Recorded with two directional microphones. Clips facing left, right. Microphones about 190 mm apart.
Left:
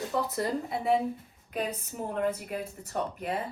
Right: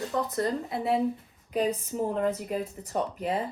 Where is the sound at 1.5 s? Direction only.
30° right (ahead or behind).